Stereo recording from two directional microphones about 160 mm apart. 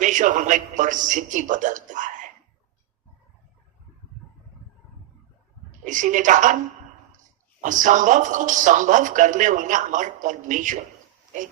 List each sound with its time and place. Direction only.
0.0 s a man's voice: 50° right (ahead or behind)
5.8 s speech: 50° right (ahead or behind)
7.6 s speech: 50° right (ahead or behind)